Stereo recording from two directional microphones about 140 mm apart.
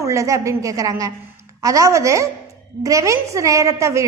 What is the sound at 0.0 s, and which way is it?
A woman's voice, 20° right (ahead or behind).